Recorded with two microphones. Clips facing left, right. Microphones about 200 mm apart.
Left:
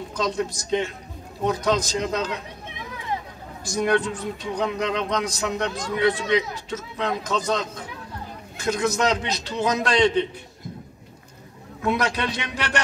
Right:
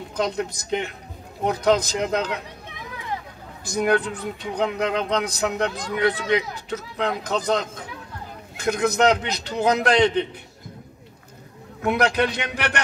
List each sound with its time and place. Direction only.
0.1 s speech: 60° right (ahead or behind)
3.6 s speech: 60° right (ahead or behind)
11.8 s speech: 60° right (ahead or behind)